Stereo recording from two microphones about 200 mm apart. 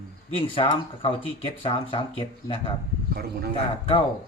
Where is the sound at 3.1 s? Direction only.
50° right (ahead or behind).